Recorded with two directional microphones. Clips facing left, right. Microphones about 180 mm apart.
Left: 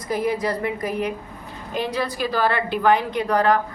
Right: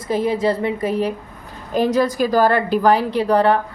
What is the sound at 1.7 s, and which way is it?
A woman's voice, 40° right (ahead or behind).